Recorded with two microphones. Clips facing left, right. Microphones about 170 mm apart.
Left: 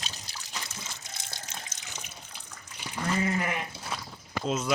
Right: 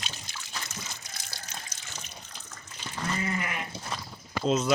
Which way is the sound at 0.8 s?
25° left (ahead or behind).